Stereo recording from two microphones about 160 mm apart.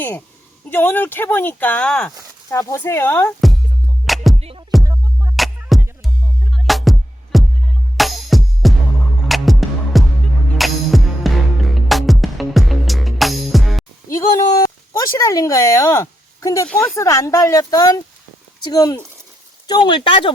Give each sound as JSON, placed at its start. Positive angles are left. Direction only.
{"t": 0.7, "sound": "speech", "side_deg": 10}
{"t": 2.5, "sound": "speech", "side_deg": 20}
{"t": 4.0, "sound": "music", "side_deg": 0}
{"t": 4.4, "sound": "music", "side_deg": -40}
{"t": 4.8, "sound": "music", "side_deg": -20}
{"t": 5.4, "sound": "music", "side_deg": 0}
{"t": 14.1, "sound": "a woman's voice", "side_deg": 20}